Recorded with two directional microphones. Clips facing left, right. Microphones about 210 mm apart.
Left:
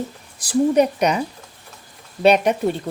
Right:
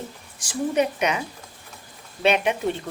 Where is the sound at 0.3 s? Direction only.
40° left (ahead or behind).